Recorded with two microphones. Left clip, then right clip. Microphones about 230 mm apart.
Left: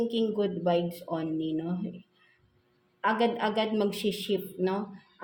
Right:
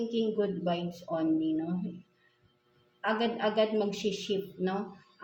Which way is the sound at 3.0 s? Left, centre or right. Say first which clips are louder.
Left 3 dB; left.